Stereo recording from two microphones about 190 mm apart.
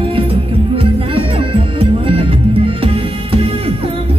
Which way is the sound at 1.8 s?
30° right (ahead or behind).